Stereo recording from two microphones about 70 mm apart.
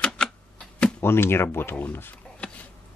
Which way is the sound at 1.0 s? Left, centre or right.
Left.